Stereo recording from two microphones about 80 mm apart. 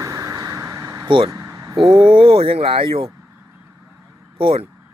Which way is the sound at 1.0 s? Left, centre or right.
Right.